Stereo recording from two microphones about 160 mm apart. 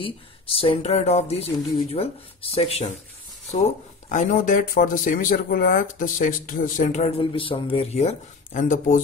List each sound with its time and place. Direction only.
0.0 s speech: 35° left (ahead or behind)
4.1 s speech: 55° left (ahead or behind)